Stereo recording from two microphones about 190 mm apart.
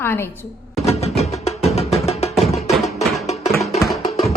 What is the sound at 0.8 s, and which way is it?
Music, 35° left (ahead or behind).